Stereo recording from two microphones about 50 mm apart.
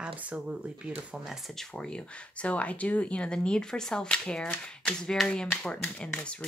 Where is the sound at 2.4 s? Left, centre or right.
Left.